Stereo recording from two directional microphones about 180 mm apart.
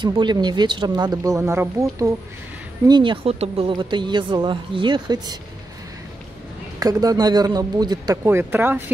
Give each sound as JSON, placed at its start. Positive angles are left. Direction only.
{"t": 0.0, "sound": "speech", "side_deg": -25}
{"t": 2.9, "sound": "speech", "side_deg": -25}
{"t": 6.8, "sound": "speech", "side_deg": -20}